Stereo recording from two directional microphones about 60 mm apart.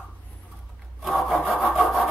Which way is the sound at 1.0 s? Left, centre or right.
Centre.